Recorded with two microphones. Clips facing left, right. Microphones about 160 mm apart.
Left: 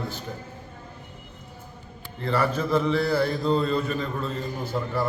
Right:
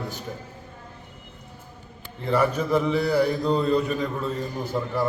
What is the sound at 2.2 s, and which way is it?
Mantra, 15° right (ahead or behind).